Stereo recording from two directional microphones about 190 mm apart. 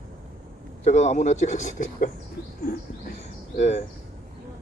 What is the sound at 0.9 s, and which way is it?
A man's voice, 35° left (ahead or behind).